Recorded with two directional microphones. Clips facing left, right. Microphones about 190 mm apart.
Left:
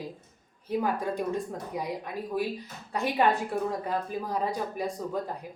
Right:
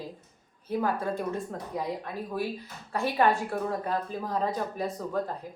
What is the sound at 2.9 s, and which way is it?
Speech, 15° left (ahead or behind).